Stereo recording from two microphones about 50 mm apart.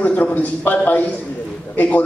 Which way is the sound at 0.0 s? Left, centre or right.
Left.